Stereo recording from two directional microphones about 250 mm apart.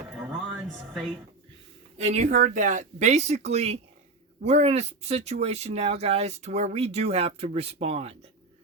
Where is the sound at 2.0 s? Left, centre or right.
Right.